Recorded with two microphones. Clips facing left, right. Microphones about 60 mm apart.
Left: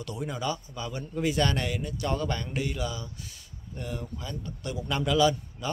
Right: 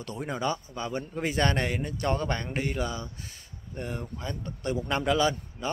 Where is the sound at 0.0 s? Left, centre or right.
Right.